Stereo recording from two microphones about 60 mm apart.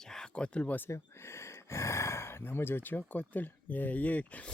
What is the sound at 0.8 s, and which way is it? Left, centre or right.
Speech, left.